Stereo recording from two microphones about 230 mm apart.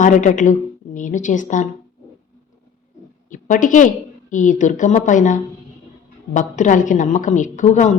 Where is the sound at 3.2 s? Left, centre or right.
Left.